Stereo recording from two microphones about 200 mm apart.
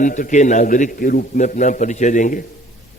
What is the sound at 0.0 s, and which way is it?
A man's voice, 40° left (ahead or behind).